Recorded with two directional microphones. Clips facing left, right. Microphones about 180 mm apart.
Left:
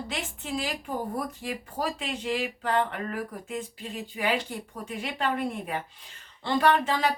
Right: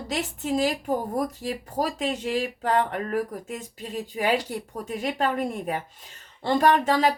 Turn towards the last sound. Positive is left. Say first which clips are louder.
# right 3 dB
turn(degrees=-40)  # may be behind; listen again after turning